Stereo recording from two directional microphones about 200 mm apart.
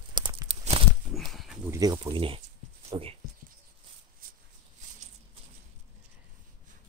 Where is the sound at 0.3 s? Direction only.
25° right (ahead or behind).